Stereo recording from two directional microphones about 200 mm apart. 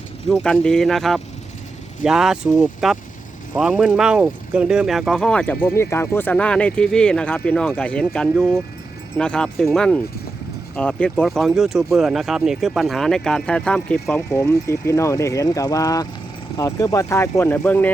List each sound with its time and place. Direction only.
0.3 s speech: 5° left (ahead or behind)